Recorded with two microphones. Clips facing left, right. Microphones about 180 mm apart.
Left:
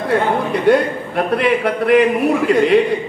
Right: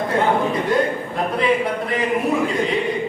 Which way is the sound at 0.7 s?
70° left (ahead or behind).